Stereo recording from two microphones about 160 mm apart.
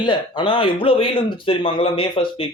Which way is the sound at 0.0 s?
30° left (ahead or behind).